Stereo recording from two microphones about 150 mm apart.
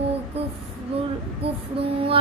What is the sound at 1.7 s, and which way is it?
Child singing, 35° right (ahead or behind).